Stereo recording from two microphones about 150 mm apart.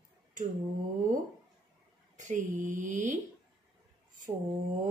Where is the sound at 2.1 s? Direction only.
55° right (ahead or behind).